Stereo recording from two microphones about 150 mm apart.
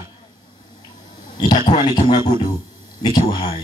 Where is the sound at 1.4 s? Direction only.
30° left (ahead or behind).